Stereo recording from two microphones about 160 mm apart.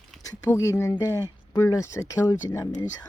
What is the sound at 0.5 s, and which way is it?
Speech, 20° left (ahead or behind).